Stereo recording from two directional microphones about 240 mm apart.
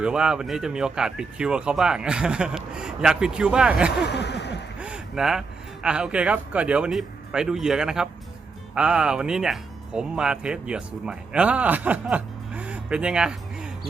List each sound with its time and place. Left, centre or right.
0.0 s speech: centre
4.0 s a sound: left
4.8 s speech: centre